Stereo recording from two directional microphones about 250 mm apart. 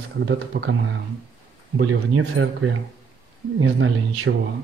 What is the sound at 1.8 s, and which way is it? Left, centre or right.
Speech, right.